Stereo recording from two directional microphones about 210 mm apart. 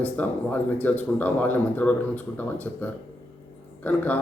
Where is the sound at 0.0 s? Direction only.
10° left (ahead or behind).